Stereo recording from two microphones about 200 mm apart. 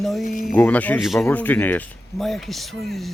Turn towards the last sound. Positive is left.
turn(degrees=0)  # may be behind; listen again after turning